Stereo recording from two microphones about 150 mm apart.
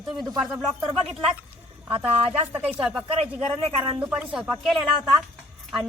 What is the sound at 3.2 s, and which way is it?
Speech, 40° right (ahead or behind).